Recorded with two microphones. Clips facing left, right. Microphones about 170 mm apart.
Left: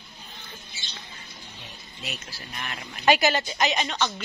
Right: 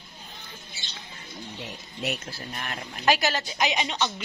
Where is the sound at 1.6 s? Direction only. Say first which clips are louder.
Right 9 dB; 65° right (ahead or behind).